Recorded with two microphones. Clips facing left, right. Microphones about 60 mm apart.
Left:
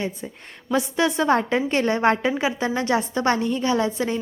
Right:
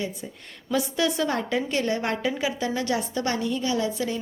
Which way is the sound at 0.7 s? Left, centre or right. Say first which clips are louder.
Left 3 dB; left.